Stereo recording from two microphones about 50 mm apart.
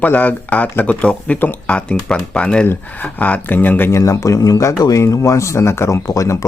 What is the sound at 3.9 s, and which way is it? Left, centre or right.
Speech, left.